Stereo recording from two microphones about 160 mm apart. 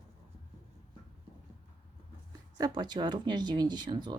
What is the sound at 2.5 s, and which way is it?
Speech, 25° right (ahead or behind).